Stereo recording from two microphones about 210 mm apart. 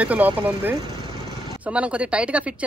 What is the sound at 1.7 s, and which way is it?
Speech, 5° right (ahead or behind).